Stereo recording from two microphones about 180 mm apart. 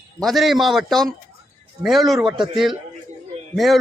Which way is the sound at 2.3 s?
25° right (ahead or behind).